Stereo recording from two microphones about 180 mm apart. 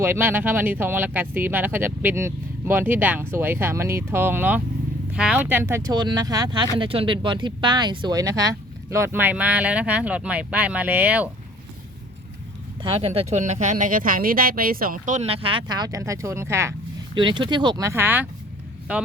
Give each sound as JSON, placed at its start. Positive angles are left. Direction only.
{"t": 0.0, "sound": "speech", "side_deg": -10}
{"t": 12.8, "sound": "speech", "side_deg": -30}
{"t": 17.2, "sound": "speech", "side_deg": -25}